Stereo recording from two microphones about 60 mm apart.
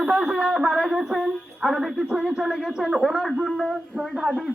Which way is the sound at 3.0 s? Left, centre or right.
Centre.